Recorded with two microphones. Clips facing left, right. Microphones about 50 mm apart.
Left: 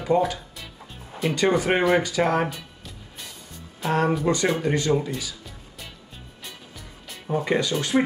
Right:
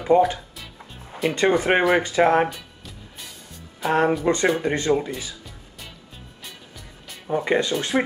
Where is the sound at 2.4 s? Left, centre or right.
Centre.